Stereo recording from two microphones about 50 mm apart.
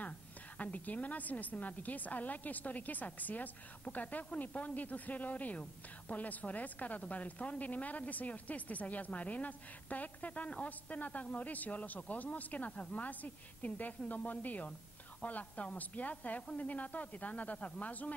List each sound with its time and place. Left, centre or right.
0.6 s a woman's voice: left